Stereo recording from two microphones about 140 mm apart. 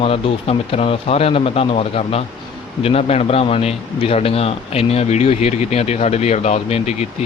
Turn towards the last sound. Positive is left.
turn(degrees=50)  # may be behind; listen again after turning